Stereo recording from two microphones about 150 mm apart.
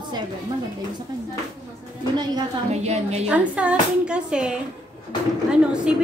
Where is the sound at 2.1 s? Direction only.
30° right (ahead or behind).